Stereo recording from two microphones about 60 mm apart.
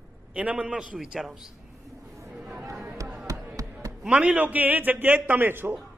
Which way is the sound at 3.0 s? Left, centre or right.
Right.